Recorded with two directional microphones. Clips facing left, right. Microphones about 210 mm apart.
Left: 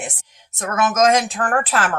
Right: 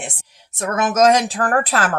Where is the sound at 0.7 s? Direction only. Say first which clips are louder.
Right 2 dB; 35° right (ahead or behind).